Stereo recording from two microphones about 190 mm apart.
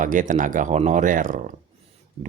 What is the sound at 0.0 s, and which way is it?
Speech, 40° right (ahead or behind).